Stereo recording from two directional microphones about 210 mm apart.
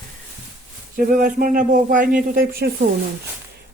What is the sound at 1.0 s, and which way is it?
Speech, 40° right (ahead or behind).